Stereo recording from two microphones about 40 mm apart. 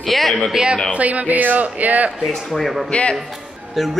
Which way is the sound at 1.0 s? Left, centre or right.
Right.